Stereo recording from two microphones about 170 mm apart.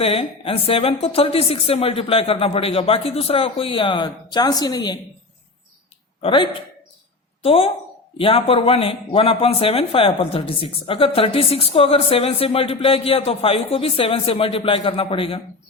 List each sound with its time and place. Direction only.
0.0 s speech: 35° left (ahead or behind)
6.2 s a man's voice: 30° left (ahead or behind)